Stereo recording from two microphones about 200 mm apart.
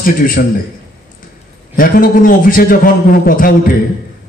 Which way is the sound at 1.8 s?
45° left (ahead or behind).